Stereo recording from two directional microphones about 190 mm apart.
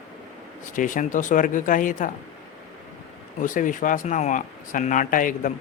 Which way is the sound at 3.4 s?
45° left (ahead or behind).